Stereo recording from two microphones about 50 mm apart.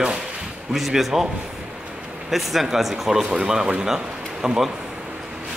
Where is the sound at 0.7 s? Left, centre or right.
Centre.